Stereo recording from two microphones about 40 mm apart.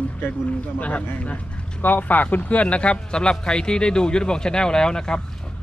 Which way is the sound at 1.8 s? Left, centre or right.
Left.